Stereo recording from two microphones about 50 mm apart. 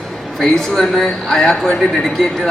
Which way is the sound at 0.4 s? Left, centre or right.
Centre.